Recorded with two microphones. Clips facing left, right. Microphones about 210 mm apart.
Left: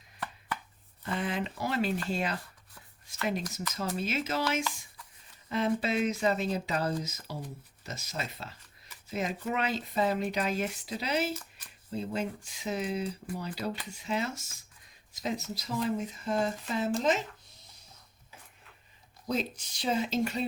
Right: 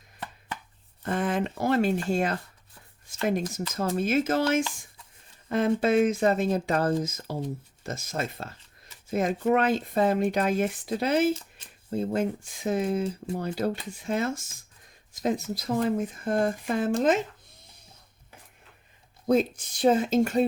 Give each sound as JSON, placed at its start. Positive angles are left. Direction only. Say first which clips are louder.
{"t": 0.2, "sound": "chopping", "louder": "even", "side_deg": -25}
{"t": 1.0, "sound": "speech", "louder": "right 6 dB", "side_deg": -50}
{"t": 11.3, "sound": "shuffling cards", "louder": "left 2 dB", "side_deg": -25}
{"t": 11.9, "sound": "speech", "louder": "right 7 dB", "side_deg": -50}
{"t": 19.3, "sound": "speech", "louder": "right 9 dB", "side_deg": -50}